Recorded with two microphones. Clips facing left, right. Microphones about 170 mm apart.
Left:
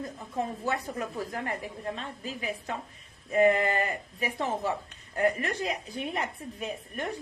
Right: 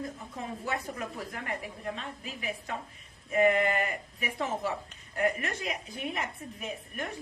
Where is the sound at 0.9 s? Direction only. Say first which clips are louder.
Left 4 dB; 30° left (ahead or behind).